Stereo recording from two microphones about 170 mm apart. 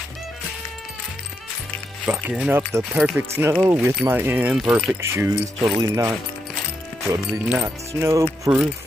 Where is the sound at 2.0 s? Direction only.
10° right (ahead or behind).